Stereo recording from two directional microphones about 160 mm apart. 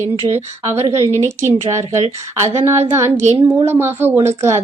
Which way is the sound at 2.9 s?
15° right (ahead or behind).